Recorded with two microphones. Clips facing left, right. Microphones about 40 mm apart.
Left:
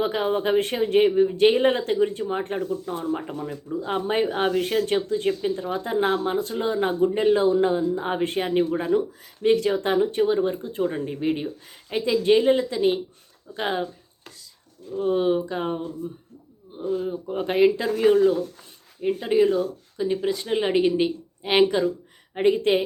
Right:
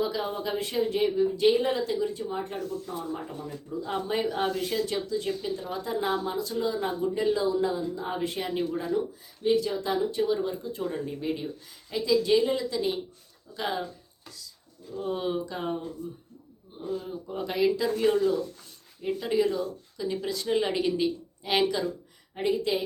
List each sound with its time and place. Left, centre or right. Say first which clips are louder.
0.0 s speech: left 6 dB; left
8.9 s a woman's voice: left 6 dB; left
14.3 s chopping: even; left
14.9 s speech: left 8 dB; left
16.9 s a woman's voice: left 7 dB; left
22.4 s speech: left 7 dB; left